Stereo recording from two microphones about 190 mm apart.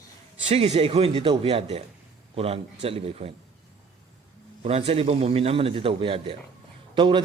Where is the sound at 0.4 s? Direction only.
35° right (ahead or behind).